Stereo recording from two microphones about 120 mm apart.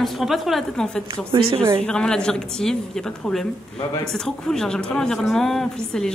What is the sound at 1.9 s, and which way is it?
Speech, 5° left (ahead or behind).